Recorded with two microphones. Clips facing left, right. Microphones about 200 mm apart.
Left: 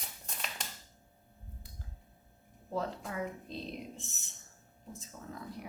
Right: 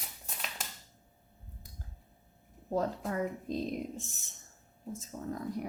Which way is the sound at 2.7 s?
40° right (ahead or behind).